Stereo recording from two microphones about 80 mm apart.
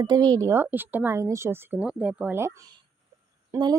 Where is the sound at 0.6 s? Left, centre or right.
Right.